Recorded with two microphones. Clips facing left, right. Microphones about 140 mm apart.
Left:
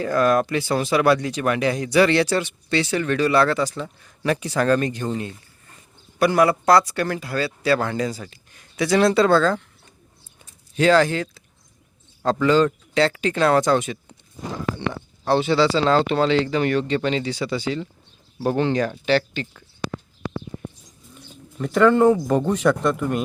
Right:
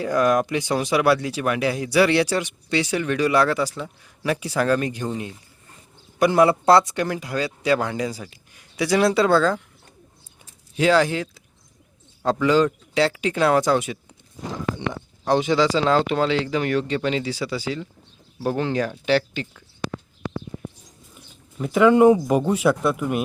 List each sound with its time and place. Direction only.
0.0 s speech: 15° right (ahead or behind)
6.1 s speech: 20° right (ahead or behind)
10.8 s speech: 10° right (ahead or behind)
21.2 s speech: 5° right (ahead or behind)